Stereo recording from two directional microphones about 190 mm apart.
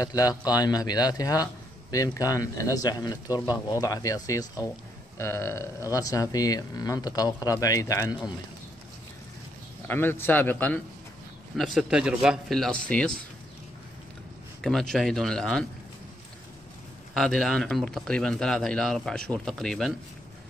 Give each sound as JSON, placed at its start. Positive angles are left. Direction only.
{"t": 0.0, "sound": "a man's voice", "side_deg": 20}
{"t": 9.8, "sound": "speech", "side_deg": 10}
{"t": 14.6, "sound": "speech", "side_deg": 0}
{"t": 17.1, "sound": "speech", "side_deg": 0}